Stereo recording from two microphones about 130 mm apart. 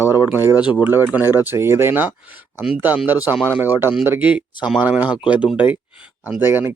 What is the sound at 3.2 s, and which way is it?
Speech, 10° right (ahead or behind).